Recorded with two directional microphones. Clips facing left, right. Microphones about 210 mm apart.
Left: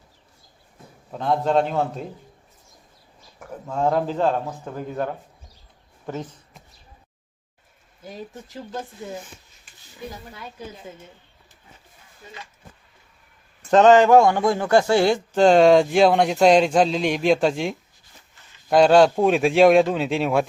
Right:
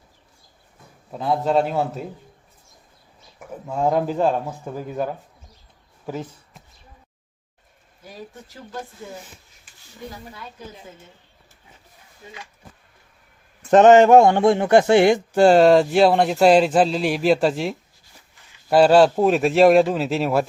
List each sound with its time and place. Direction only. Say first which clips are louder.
1.1 s a man's voice: even; 5° right (ahead or behind)
3.4 s speech: right 1 dB; 10° right (ahead or behind)
6.1 s a sound: right 1 dB; 5° right (ahead or behind)
13.7 s a man's voice: right 2 dB; 20° right (ahead or behind); by 20.5 s centre (ahead or behind)